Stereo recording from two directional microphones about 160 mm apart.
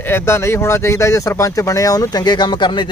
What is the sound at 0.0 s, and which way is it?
Speech, 15° left (ahead or behind).